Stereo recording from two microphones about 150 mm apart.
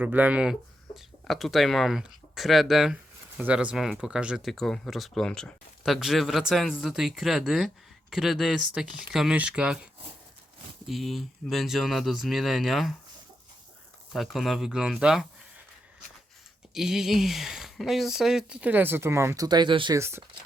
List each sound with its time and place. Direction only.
0.0 s speech: 10° right (ahead or behind)
14.1 s speech: centre (ahead or behind)
16.7 s speech: 5° right (ahead or behind); by 20.0 s 30° right (ahead or behind)
20.0 s speech: 15° right (ahead or behind)